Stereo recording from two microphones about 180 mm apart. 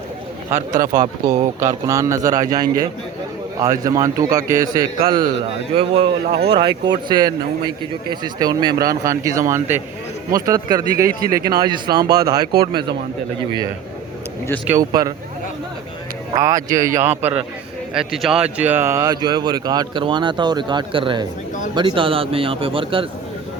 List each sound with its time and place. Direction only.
0.5 s a man's voice: 20° right (ahead or behind)
14.7 s speech: 20° right (ahead or behind)
16.3 s a man's voice: 20° right (ahead or behind)